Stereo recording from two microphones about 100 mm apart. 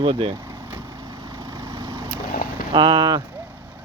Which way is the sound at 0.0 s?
65° right (ahead or behind).